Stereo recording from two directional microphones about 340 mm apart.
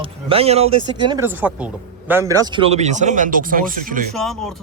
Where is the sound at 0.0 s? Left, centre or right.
Centre.